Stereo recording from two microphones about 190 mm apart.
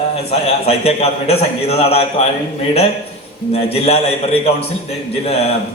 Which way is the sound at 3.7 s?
30° left (ahead or behind).